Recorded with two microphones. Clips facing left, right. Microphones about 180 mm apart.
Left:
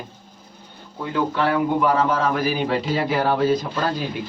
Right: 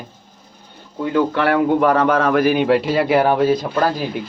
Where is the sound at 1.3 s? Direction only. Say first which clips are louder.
Right 4 dB; 65° right (ahead or behind).